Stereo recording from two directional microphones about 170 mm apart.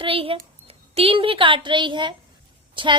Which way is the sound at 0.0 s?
30° right (ahead or behind).